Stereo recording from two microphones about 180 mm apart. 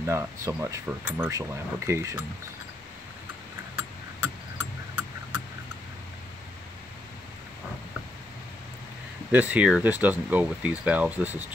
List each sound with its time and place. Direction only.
0.1 s speech: 15° right (ahead or behind)
4.2 s a sound: 10° right (ahead or behind)
9.3 s speech: 10° right (ahead or behind)